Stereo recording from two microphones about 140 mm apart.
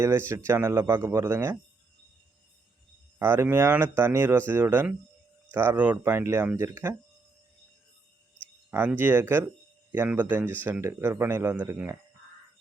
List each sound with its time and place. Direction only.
0.0 s a man's voice: 20° right (ahead or behind)
3.2 s a man's voice: 15° right (ahead or behind)
8.9 s a man's voice: 15° right (ahead or behind)